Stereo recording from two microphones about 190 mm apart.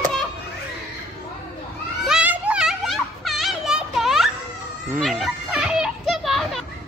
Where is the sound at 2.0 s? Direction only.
5° right (ahead or behind).